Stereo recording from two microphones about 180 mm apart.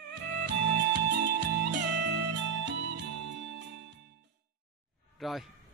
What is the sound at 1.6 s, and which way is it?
Music, 75° right (ahead or behind).